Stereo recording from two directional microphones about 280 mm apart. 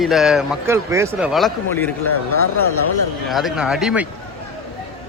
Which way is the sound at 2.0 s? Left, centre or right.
Left.